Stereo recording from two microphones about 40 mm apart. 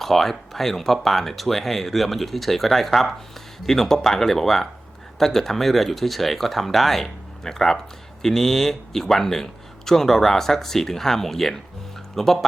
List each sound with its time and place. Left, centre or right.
0.0 s speech: centre